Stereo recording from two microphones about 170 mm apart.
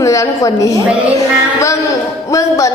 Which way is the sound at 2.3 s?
20° left (ahead or behind).